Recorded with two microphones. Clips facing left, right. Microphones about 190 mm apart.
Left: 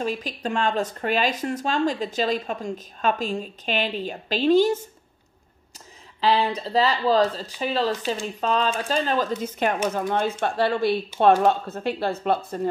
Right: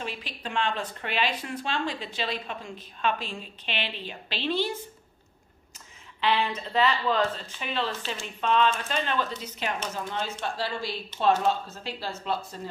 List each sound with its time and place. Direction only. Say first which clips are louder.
0.0 s speech: left 9 dB; 45° left (ahead or behind)
6.2 s speech: left 5 dB; 35° left (ahead or behind); by 12.5 s 55° left (ahead or behind)